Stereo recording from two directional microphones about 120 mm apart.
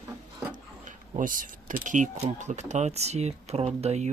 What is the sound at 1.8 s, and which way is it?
Speech, 90° right.